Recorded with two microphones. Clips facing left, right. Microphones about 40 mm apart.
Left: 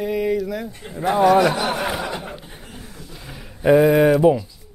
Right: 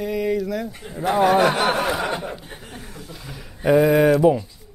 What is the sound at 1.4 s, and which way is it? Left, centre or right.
Speech, right.